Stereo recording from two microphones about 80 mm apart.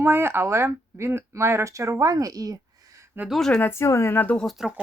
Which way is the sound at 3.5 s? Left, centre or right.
Left.